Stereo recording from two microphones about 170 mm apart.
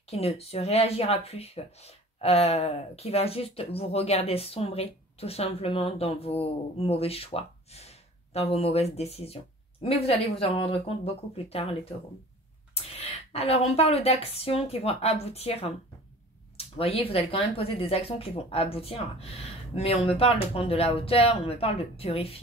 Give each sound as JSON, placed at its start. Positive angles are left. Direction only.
{"t": 0.1, "sound": "speech", "side_deg": 40}